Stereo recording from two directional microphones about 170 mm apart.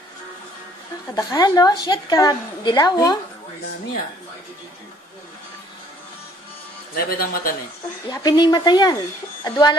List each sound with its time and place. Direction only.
1.1 s a woman's voice: 20° left (ahead or behind)
7.0 s a man's voice: 60° left (ahead or behind)
8.1 s a woman's voice: 25° left (ahead or behind)